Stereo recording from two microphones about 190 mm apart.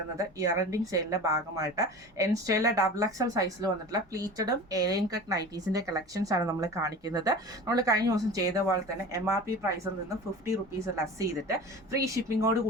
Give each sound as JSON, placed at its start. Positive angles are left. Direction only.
{"t": 0.2, "sound": "a woman's voice", "side_deg": -15}